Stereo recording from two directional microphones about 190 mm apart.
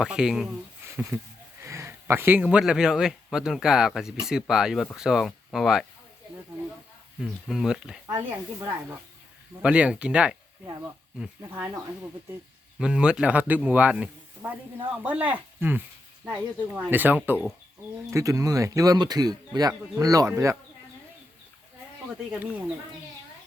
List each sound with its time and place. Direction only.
0.0 s a man's voice: 5° right (ahead or behind)
7.2 s speech: centre (ahead or behind)
8.0 s a man's voice: 15° right (ahead or behind)
12.8 s a man's voice: 5° right (ahead or behind)
22.3 s a man's voice: 10° right (ahead or behind)